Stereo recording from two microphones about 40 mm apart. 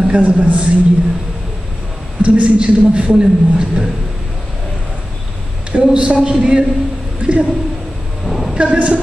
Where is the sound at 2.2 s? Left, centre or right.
Right.